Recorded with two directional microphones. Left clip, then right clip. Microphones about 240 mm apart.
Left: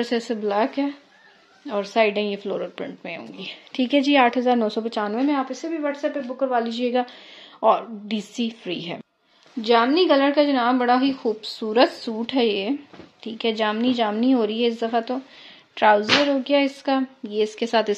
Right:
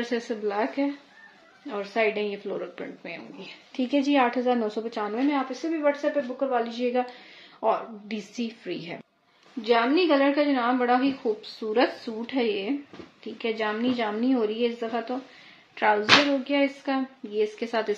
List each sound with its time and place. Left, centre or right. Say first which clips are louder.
0.0 s a woman's voice: left 4 dB; left